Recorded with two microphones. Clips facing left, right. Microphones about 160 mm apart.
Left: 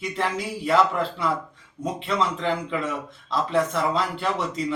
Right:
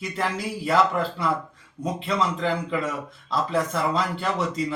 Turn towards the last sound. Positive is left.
turn(degrees=0)  # may be behind; listen again after turning